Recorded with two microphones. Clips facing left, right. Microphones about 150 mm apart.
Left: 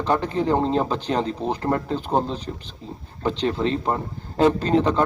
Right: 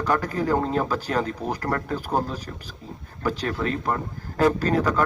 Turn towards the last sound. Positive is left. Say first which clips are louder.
# left 3 dB
turn(degrees=25)  # may be behind; listen again after turning